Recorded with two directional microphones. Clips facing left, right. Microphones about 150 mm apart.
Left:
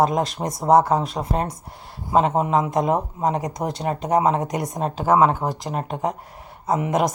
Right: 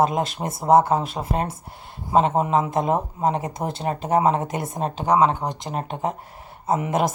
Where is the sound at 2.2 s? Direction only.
30° right (ahead or behind).